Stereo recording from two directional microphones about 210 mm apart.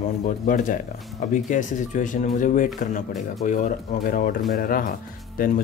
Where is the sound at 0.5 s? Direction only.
40° left (ahead or behind).